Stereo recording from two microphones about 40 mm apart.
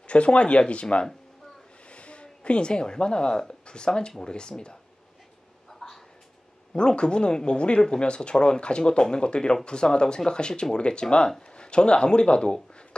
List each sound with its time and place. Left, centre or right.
0.0 s speech: left
5.7 s a sound: centre
6.7 s speech: left